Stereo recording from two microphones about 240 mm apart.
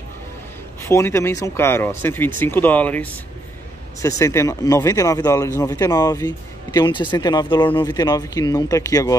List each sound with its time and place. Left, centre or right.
0.8 s speech: centre
4.2 s speech: centre